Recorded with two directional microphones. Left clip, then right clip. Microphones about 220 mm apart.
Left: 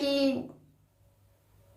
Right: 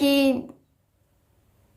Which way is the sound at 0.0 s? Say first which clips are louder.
Right 7 dB; 45° right (ahead or behind).